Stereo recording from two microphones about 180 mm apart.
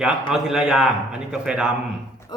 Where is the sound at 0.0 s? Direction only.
5° right (ahead or behind).